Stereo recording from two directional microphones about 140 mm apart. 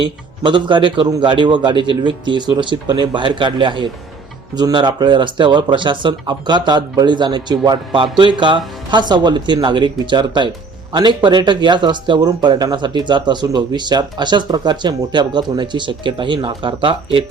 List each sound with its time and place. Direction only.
0.4 s speech: 35° right (ahead or behind)